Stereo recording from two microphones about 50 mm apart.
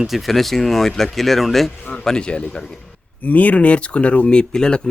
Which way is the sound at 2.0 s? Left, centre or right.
Centre.